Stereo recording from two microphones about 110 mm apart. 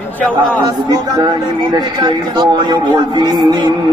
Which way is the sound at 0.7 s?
35° right (ahead or behind).